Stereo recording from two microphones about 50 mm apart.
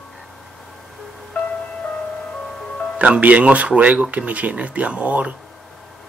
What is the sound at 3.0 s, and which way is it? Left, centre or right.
Speech, right.